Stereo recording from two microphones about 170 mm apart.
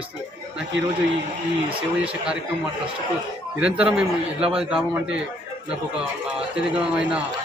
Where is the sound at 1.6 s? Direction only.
5° right (ahead or behind).